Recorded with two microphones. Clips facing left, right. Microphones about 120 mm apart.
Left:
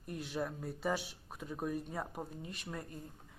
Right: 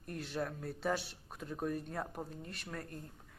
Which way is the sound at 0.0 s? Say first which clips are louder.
Even; 5° left (ahead or behind).